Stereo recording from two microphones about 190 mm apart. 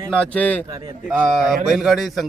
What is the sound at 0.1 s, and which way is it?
Speech, 5° left (ahead or behind).